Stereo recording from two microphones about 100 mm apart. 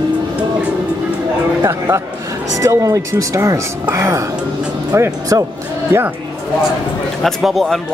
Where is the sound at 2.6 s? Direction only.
35° right (ahead or behind).